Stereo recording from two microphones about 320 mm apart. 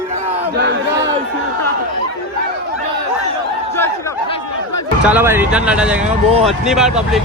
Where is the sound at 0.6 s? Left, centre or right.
Right.